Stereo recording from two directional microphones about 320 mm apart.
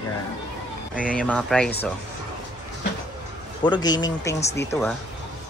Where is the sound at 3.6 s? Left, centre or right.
Centre.